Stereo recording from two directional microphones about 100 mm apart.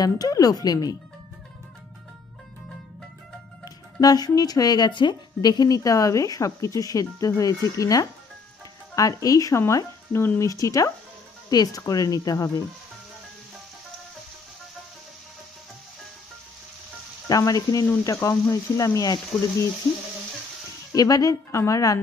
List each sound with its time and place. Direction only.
0.0 s speech: 40° left (ahead or behind)
3.6 s speech: 40° left (ahead or behind); by 10.5 s 25° left (ahead or behind)
10.5 s speech: 35° left (ahead or behind)
17.3 s speech: 35° left (ahead or behind)
20.9 s speech: 35° left (ahead or behind)